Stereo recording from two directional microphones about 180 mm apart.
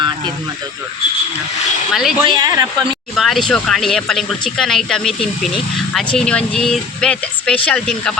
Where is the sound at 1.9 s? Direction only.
Centre (ahead or behind).